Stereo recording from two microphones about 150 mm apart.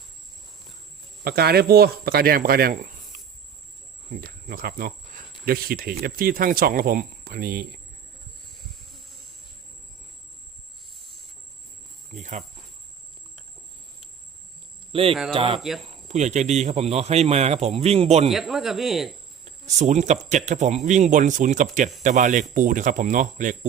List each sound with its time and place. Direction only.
1.2 s speech: 90° right; by 3.2 s 65° right (ahead or behind)
4.1 s speech: 85° right
12.1 s cricket: 55° right (ahead or behind)
15.3 s a man's voice: 40° right (ahead or behind)
18.3 s speech: centre (ahead or behind)
19.5 s cricket: 50° right (ahead or behind)
20.3 s a man's voice: 50° right (ahead or behind)